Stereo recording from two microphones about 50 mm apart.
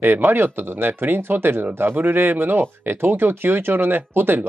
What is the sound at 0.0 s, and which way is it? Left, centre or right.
Speech, right.